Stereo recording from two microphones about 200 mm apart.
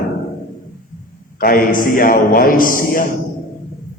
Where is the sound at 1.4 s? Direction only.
45° left (ahead or behind).